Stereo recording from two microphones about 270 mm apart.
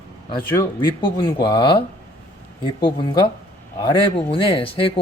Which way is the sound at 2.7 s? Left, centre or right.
Centre.